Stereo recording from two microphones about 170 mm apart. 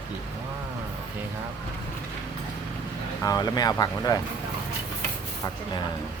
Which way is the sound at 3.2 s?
20° left (ahead or behind).